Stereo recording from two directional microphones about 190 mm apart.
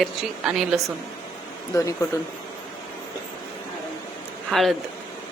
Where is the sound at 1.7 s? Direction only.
15° left (ahead or behind).